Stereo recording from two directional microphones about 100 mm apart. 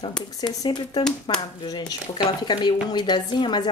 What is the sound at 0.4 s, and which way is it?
Speech, 40° left (ahead or behind).